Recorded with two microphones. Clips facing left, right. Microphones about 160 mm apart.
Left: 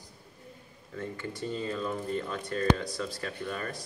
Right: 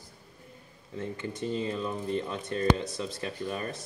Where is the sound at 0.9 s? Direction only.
20° right (ahead or behind).